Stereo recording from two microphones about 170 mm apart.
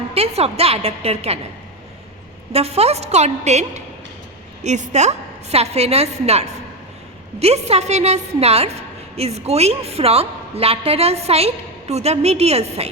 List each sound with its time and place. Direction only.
0.1 s a woman's voice: 35° right (ahead or behind)
2.5 s a woman's voice: 35° right (ahead or behind)